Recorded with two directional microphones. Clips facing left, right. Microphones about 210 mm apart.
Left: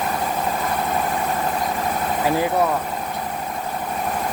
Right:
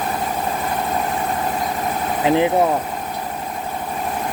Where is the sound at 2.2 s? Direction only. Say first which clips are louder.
Right 5 dB; 20° right (ahead or behind).